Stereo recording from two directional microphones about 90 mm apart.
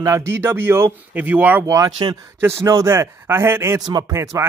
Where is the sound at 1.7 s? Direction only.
40° right (ahead or behind).